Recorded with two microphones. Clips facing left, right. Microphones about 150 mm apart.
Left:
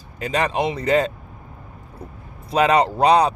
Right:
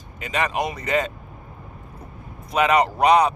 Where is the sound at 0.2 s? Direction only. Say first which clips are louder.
Left 3 dB; 35° left (ahead or behind).